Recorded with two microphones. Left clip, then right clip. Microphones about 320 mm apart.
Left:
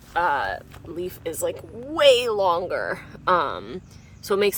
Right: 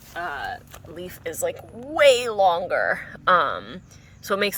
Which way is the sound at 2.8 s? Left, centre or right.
Centre.